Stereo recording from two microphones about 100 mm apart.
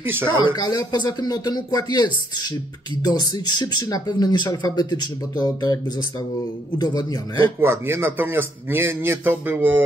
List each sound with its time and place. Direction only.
0.0 s a man's voice: 20° right (ahead or behind)
0.5 s speech: 45° left (ahead or behind)
6.8 s speech: 40° left (ahead or behind)
7.6 s a man's voice: 25° right (ahead or behind)